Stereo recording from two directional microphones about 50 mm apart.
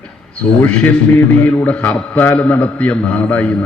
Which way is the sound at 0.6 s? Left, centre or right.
Left.